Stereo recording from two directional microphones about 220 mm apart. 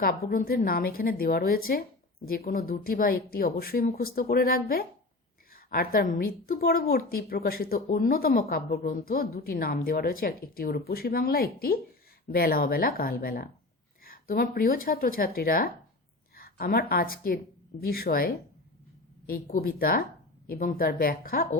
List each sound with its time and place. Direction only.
0.0 s a woman's voice: 40° left (ahead or behind)
16.3 s a sound: 40° left (ahead or behind)
16.9 s a woman's voice: 40° left (ahead or behind)